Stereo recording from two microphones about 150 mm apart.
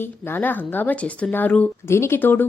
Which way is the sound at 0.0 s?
15° left (ahead or behind).